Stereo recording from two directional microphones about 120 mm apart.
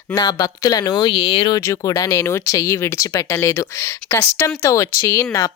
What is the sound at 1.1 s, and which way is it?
Speech, 50° left (ahead or behind).